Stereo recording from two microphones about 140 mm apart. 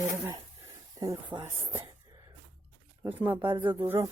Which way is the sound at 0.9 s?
25° right (ahead or behind).